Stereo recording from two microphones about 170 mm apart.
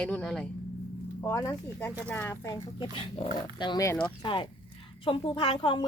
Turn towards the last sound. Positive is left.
turn(degrees=30)  # may be behind; listen again after turning